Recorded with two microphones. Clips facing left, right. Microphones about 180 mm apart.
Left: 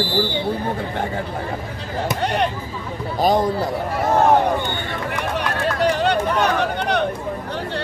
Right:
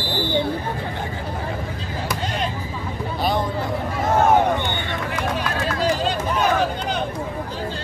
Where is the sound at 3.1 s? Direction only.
40° left (ahead or behind).